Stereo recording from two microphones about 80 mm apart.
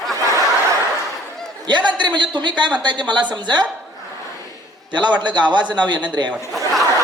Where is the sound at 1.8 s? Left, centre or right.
Right.